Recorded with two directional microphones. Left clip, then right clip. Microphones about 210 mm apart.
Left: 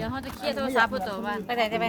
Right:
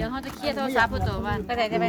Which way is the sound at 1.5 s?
45° left (ahead or behind).